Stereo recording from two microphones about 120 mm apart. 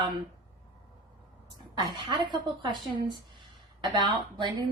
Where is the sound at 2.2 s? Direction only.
40° right (ahead or behind).